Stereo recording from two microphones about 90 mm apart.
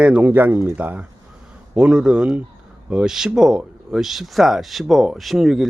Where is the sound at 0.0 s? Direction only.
15° right (ahead or behind).